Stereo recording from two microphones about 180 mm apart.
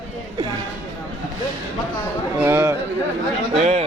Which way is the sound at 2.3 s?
10° right (ahead or behind).